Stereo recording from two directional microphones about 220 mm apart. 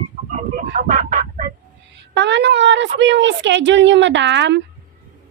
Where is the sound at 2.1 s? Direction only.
55° right (ahead or behind).